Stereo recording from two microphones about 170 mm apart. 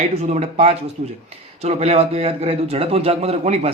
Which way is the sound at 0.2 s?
40° right (ahead or behind).